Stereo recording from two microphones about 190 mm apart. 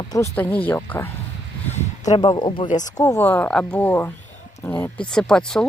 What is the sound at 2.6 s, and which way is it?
Speech, 40° left (ahead or behind).